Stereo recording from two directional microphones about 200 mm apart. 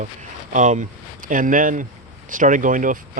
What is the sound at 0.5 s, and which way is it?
Speech, 40° right (ahead or behind).